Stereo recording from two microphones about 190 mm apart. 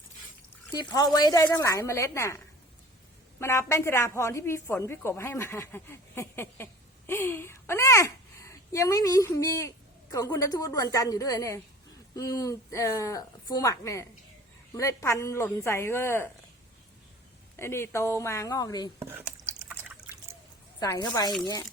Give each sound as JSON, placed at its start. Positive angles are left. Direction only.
{"t": 0.7, "sound": "a woman's voice", "side_deg": 20}
{"t": 3.4, "sound": "a woman's voice", "side_deg": 15}
{"t": 17.6, "sound": "a woman's voice", "side_deg": 15}
{"t": 19.1, "sound": "drip", "side_deg": -10}
{"t": 20.7, "sound": "a woman's voice", "side_deg": 20}